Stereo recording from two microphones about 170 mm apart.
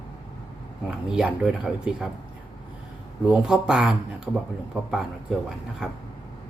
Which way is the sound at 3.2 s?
5° right (ahead or behind).